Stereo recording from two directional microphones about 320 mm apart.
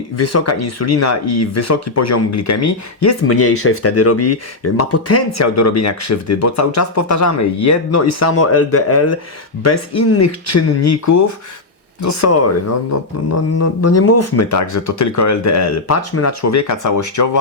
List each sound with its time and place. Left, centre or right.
0.2 s speech: left